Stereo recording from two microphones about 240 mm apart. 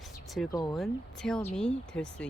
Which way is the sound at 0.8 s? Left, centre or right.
Centre.